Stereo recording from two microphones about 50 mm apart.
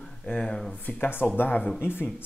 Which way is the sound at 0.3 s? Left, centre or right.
Centre.